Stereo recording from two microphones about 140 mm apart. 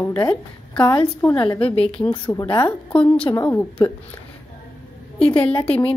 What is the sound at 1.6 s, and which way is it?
Speech, 40° left (ahead or behind).